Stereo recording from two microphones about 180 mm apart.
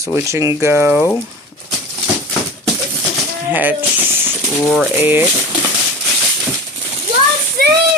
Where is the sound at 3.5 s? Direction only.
10° right (ahead or behind).